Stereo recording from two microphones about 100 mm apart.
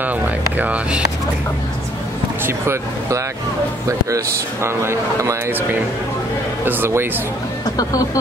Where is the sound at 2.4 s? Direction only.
30° right (ahead or behind).